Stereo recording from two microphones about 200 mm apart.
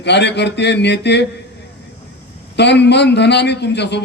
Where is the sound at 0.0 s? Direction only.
60° left (ahead or behind).